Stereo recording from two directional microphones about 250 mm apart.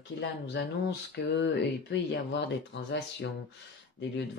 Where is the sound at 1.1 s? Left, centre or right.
Left.